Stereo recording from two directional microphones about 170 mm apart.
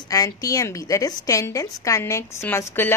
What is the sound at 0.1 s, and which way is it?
A woman's voice, 20° left (ahead or behind).